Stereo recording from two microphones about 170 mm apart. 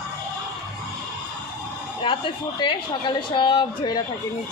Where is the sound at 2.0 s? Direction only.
30° left (ahead or behind).